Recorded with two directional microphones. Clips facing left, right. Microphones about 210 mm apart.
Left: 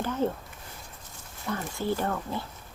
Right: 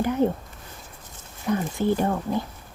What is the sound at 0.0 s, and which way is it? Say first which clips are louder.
Speech: right 6 dB; 15° right (ahead or behind).